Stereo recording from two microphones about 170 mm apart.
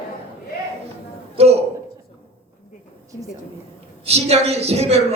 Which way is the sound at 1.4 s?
35° right (ahead or behind).